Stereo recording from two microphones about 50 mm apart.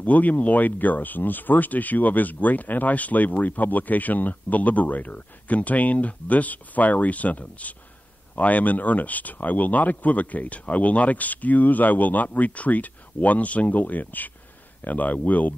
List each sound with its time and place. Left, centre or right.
0.0 s speech: left